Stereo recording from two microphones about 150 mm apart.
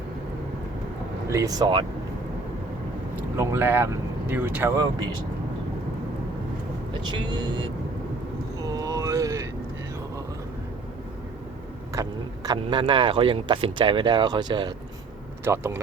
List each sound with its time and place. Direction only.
1.3 s speech: 25° right (ahead or behind)
3.3 s speech: 15° right (ahead or behind)
7.1 s speech: 30° right (ahead or behind)
8.6 s a sound: 25° right (ahead or behind)
11.9 s speech: 25° right (ahead or behind)
15.4 s speech: 15° right (ahead or behind)